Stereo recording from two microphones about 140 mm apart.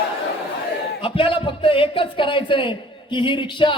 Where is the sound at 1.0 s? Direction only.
40° left (ahead or behind).